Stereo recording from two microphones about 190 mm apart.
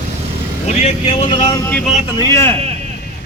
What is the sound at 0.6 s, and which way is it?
Speech, 35° left (ahead or behind).